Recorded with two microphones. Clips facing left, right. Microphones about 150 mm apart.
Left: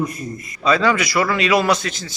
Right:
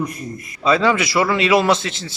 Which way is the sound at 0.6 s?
25° right (ahead or behind).